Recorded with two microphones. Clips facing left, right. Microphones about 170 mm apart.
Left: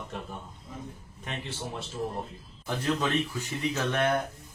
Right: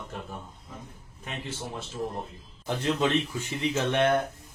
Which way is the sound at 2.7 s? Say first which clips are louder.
Right 2 dB; 25° right (ahead or behind).